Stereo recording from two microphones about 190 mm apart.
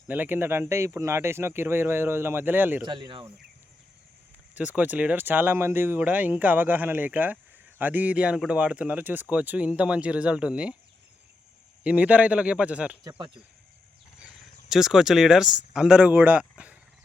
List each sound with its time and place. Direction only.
0.1 s speech: 10° right (ahead or behind)
2.8 s speech: 25° right (ahead or behind)
4.5 s speech: 10° right (ahead or behind)
11.8 s speech: 5° right (ahead or behind)
13.1 s speech: 25° right (ahead or behind)
14.7 s speech: centre (ahead or behind)